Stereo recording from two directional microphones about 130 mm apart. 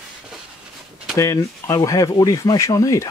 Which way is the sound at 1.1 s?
25° left (ahead or behind).